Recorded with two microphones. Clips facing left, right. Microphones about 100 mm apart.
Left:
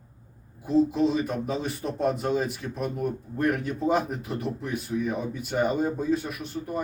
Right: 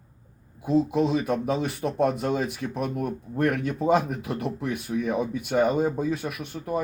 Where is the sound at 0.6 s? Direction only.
60° right (ahead or behind).